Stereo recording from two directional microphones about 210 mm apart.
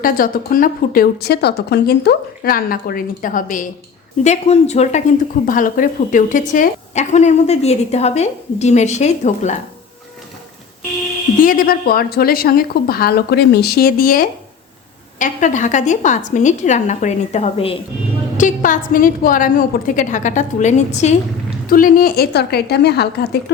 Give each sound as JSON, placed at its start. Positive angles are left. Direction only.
{"t": 0.0, "sound": "a woman's voice", "side_deg": 40}
{"t": 11.4, "sound": "a woman's voice", "side_deg": 45}